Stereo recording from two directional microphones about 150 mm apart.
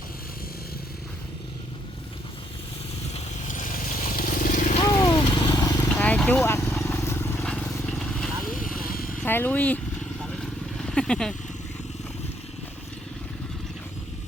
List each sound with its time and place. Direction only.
3.1 s a sound: 55° left (ahead or behind)
4.9 s vehicle: 30° left (ahead or behind)
5.9 s vehicle: 10° left (ahead or behind)
9.2 s speech: 15° left (ahead or behind)
10.2 s vehicle: centre (ahead or behind)